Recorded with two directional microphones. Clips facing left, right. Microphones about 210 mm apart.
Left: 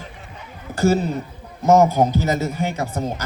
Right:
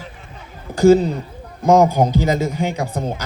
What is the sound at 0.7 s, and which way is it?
A man's voice, 15° right (ahead or behind).